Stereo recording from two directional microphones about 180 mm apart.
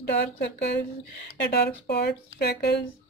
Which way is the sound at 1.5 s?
65° left (ahead or behind).